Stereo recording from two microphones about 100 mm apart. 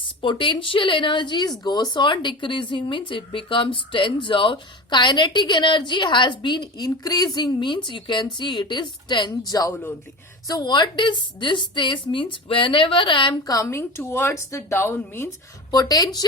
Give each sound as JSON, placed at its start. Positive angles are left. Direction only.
{"t": 0.0, "sound": "speech", "side_deg": 55}
{"t": 9.5, "sound": "speech", "side_deg": 35}
{"t": 13.5, "sound": "a woman's voice", "side_deg": 30}
{"t": 15.7, "sound": "speech", "side_deg": 40}